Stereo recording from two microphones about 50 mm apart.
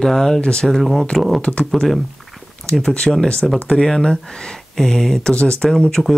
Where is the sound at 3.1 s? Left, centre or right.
Centre.